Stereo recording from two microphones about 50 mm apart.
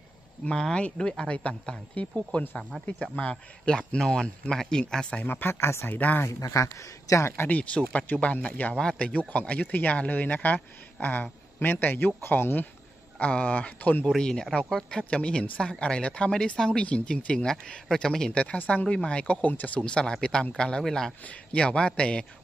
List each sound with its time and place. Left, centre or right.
0.5 s speech: centre
5.2 s speech: left
5.9 s speech: left
6.2 s speech: left
7.4 s speech: left
8.7 s speech: left
13.2 s speech: left
14.1 s speech: centre
18.6 s speech: left
19.0 s speech: left
19.4 s speech: left
19.8 s speech: centre
21.2 s speech: left